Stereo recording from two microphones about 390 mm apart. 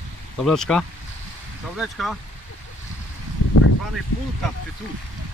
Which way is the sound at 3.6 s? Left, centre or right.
Left.